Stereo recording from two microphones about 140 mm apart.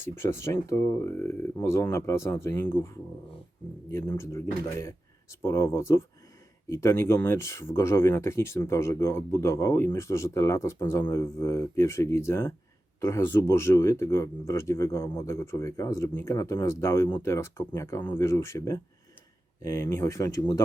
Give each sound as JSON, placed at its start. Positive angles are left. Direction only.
{"t": 0.0, "sound": "speech", "side_deg": 20}
{"t": 4.2, "sound": "speech", "side_deg": 20}